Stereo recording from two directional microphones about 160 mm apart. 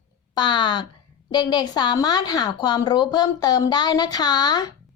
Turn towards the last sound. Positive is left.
turn(degrees=25)  # may be behind; listen again after turning